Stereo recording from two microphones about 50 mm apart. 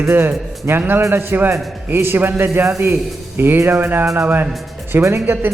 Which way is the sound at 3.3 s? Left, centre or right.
Right.